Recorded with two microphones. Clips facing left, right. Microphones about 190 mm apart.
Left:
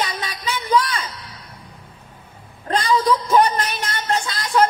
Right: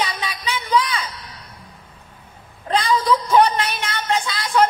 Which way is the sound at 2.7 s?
45° left (ahead or behind).